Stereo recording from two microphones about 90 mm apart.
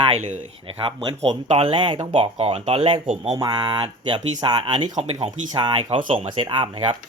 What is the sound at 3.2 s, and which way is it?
Speech, 50° right (ahead or behind).